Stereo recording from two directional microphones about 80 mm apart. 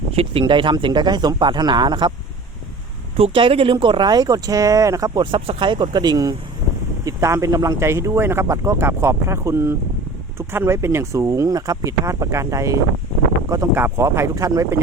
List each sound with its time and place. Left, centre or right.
0.4 s speech: right
3.3 s speech: right
5.2 s speech: right
7.0 s speech: right
13.7 s speech: right